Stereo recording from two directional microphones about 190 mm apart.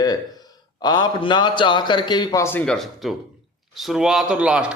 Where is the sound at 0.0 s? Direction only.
20° left (ahead or behind).